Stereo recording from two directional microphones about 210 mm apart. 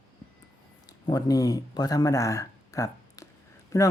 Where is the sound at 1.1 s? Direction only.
15° left (ahead or behind).